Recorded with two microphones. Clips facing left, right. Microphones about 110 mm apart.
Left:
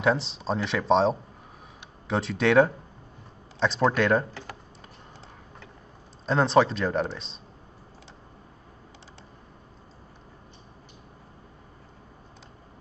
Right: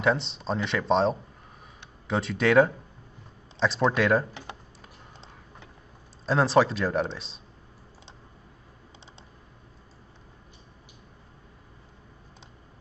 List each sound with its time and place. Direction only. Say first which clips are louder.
0.0 s speech: left 1 dB; centre (ahead or behind)
4.3 s typing: left 1 dB; 20° right (ahead or behind)
6.2 s speech: left 1 dB; centre (ahead or behind)